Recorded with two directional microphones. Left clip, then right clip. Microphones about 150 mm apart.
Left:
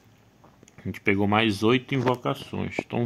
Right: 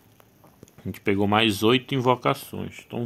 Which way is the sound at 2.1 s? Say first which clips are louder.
Right 5 dB; 15° right (ahead or behind).